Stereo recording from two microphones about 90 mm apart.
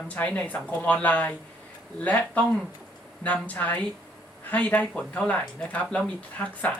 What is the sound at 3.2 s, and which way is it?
Speech, 15° left (ahead or behind).